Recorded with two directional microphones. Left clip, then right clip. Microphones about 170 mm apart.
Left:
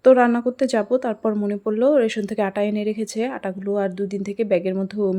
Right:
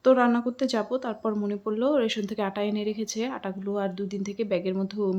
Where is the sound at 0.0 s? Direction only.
30° left (ahead or behind).